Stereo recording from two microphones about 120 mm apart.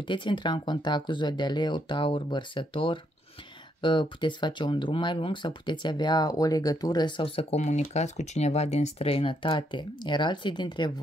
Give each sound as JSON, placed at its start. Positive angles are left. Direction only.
{"t": 0.0, "sound": "speech", "side_deg": 45}
{"t": 7.5, "sound": "speech", "side_deg": 70}